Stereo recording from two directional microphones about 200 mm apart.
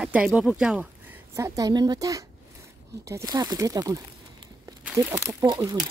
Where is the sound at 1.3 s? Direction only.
15° right (ahead or behind).